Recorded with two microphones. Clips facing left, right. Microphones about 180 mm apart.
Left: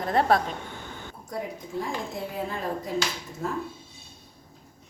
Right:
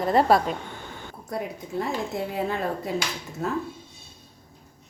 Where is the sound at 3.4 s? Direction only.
70° right (ahead or behind).